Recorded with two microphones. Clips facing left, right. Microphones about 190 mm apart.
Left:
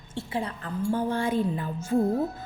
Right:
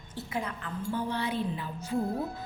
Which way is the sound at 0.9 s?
45° left (ahead or behind).